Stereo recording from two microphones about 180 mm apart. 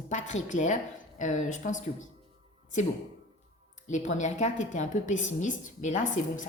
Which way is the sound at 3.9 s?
40° left (ahead or behind).